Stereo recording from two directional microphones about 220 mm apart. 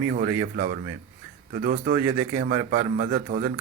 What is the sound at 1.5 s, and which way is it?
A man's voice, 40° right (ahead or behind).